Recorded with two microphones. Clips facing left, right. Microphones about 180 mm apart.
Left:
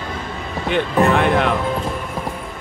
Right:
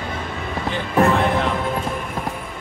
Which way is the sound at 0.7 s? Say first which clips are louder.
Left 2 dB; 65° left (ahead or behind).